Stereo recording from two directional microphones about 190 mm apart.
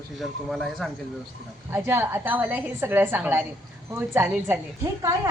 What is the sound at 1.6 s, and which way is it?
A woman's voice, 10° right (ahead or behind).